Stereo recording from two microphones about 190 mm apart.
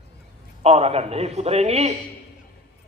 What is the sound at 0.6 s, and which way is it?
A man's voice, 35° right (ahead or behind).